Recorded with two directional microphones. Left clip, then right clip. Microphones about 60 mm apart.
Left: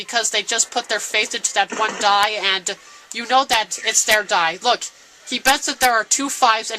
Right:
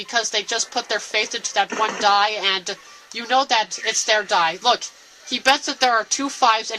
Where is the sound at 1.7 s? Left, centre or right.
Centre.